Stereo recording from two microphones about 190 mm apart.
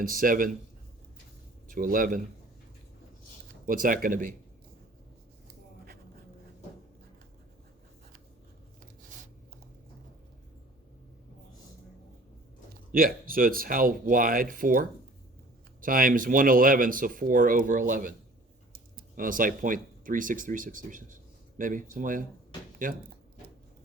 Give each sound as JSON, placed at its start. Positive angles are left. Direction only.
{"t": 0.0, "sound": "speech", "side_deg": -45}
{"t": 1.6, "sound": "speech", "side_deg": -45}
{"t": 3.7, "sound": "speech", "side_deg": -45}
{"t": 12.9, "sound": "speech", "side_deg": -50}